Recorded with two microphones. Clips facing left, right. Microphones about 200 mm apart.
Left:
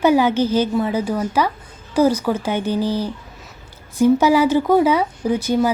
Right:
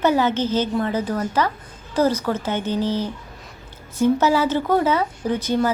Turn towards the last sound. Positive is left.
turn(degrees=10)  # may be behind; listen again after turning